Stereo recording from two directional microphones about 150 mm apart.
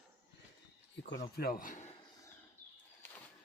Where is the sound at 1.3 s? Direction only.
80° left; by 1.9 s 55° left (ahead or behind).